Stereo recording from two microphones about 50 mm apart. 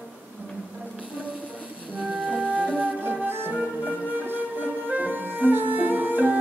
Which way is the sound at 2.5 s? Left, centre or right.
Right.